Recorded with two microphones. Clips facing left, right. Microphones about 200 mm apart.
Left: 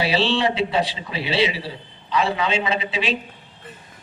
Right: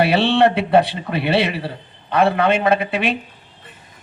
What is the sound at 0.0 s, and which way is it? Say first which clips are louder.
Speech: right 6 dB; 60° right (ahead or behind).